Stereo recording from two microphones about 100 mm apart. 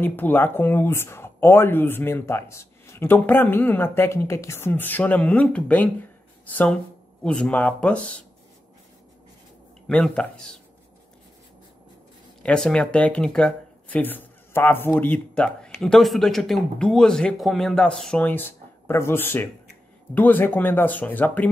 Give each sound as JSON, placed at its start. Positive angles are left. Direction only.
{"t": 0.0, "sound": "speech", "side_deg": 20}
{"t": 9.8, "sound": "speech", "side_deg": 10}
{"t": 12.4, "sound": "speech", "side_deg": 10}
{"t": 18.2, "sound": "speech", "side_deg": 20}